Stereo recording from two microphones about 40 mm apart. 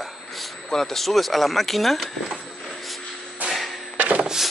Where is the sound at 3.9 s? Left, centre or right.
Right.